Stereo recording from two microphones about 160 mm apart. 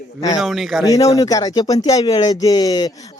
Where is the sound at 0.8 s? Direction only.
20° left (ahead or behind).